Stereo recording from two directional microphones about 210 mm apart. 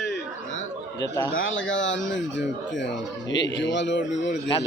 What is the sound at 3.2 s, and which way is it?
A man's voice, 60° left (ahead or behind).